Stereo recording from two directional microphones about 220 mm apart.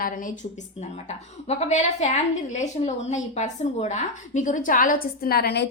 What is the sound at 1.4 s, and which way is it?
A woman's voice, 30° left (ahead or behind).